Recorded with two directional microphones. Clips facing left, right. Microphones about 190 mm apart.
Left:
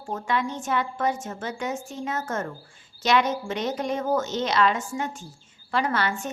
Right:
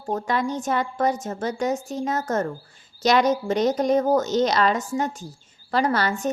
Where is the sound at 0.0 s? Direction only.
40° right (ahead or behind).